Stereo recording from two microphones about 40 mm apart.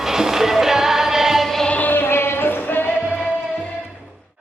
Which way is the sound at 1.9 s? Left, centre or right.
Left.